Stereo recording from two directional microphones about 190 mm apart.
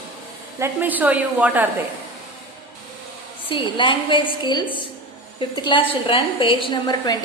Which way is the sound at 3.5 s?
25° left (ahead or behind).